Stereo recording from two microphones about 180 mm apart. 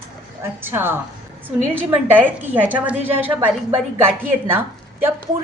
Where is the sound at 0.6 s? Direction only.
10° right (ahead or behind).